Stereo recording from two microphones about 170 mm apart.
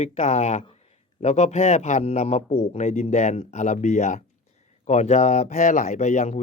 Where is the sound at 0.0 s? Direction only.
40° left (ahead or behind).